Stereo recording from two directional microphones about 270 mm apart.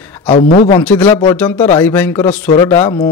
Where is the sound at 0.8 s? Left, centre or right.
Centre.